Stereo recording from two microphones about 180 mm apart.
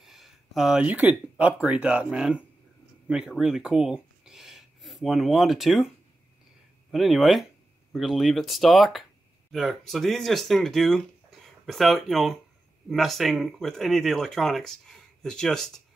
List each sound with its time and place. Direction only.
0.0 s speech: centre (ahead or behind)
6.9 s speech: centre (ahead or behind)